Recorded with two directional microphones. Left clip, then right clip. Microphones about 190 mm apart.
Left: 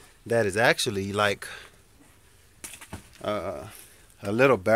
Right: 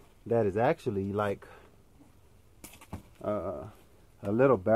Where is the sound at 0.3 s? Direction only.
10° left (ahead or behind).